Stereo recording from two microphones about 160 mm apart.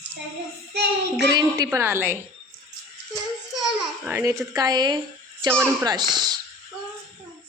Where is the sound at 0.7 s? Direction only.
90° right.